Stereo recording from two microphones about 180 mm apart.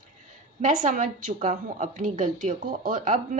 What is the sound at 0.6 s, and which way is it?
A woman's voice, 45° right (ahead or behind).